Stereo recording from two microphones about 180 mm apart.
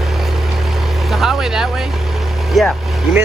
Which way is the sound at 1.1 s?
Centre (ahead or behind).